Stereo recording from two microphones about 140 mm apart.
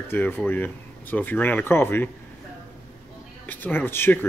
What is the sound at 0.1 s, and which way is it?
Speech, 15° left (ahead or behind).